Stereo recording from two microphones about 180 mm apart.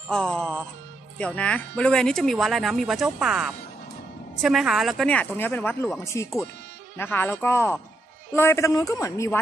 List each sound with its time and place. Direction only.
0.1 s a man's voice: 5° left (ahead or behind)